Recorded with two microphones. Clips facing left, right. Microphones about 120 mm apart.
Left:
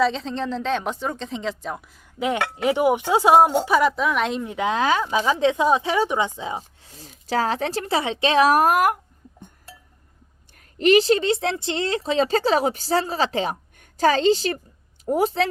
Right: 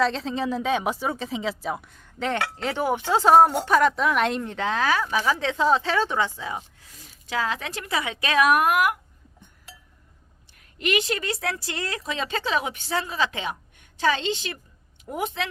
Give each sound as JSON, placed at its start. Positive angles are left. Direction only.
{"t": 0.0, "sound": "speech", "side_deg": 0}
{"t": 6.8, "sound": "speech", "side_deg": 30}
{"t": 10.8, "sound": "speech", "side_deg": 35}